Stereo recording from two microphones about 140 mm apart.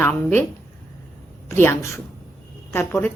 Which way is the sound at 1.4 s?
20° left (ahead or behind).